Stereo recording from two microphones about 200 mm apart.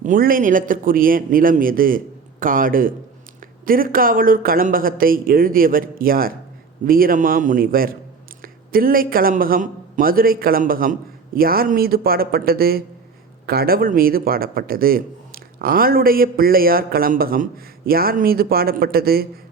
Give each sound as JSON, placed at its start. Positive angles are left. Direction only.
{"t": 0.0, "sound": "speech", "side_deg": -45}